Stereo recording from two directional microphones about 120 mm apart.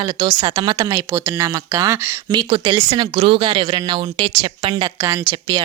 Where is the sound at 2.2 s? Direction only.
40° right (ahead or behind).